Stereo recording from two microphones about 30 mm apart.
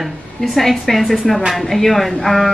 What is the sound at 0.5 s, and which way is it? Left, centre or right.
A woman's voice, centre.